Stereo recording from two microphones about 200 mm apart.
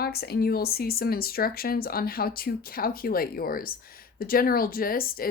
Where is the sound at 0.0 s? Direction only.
50° left (ahead or behind).